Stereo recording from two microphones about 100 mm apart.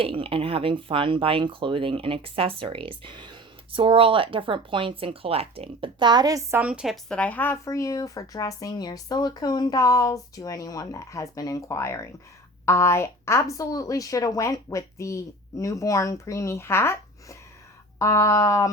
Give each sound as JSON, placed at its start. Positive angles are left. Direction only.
{"t": 0.0, "sound": "speech", "side_deg": -65}
{"t": 6.0, "sound": "a woman's voice", "side_deg": -45}
{"t": 6.7, "sound": "speech", "side_deg": -10}
{"t": 6.9, "sound": "speech", "side_deg": 10}
{"t": 7.5, "sound": "speech", "side_deg": 30}